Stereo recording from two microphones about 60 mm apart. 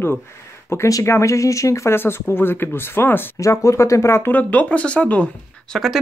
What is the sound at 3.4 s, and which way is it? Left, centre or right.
Speech, left.